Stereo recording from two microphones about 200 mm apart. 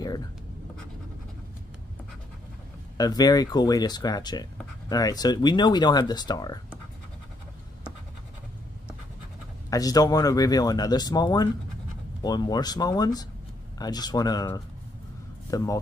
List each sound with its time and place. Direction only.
3.0 s speech: 20° left (ahead or behind)
9.7 s speech: 20° left (ahead or behind)